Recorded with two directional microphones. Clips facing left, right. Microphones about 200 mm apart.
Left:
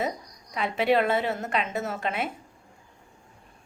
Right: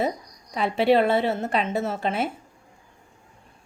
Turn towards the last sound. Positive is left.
turn(degrees=-30)  # may be behind; listen again after turning